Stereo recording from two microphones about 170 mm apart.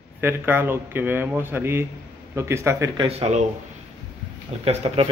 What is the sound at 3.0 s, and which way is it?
Speech, 35° right (ahead or behind).